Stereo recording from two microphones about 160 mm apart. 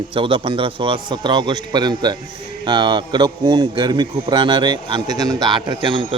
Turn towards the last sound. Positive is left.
turn(degrees=-30)  # may be behind; listen again after turning